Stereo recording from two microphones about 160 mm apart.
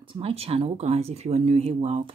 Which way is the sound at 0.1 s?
35° right (ahead or behind).